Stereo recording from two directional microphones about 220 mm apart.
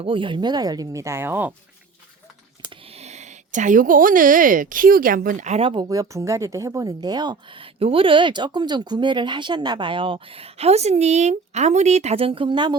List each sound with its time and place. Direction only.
0.0 s speech: 25° right (ahead or behind)
2.6 s speech: 30° right (ahead or behind)